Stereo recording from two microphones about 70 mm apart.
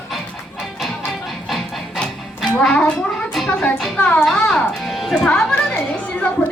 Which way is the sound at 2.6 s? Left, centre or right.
Centre.